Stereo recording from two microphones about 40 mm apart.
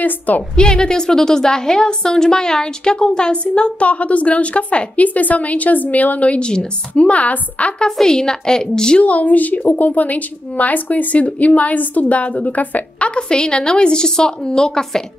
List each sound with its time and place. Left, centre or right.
0.6 s a woman's voice: centre; by 7.7 s left
7.8 s a woman's voice: centre
8.9 s speech: left
13.1 s a woman's voice: left